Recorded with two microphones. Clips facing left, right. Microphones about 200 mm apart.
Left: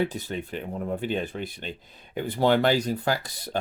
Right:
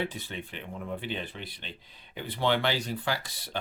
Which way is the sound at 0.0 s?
40° left (ahead or behind).